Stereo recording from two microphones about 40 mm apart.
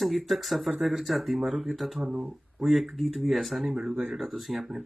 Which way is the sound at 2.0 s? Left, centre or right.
Right.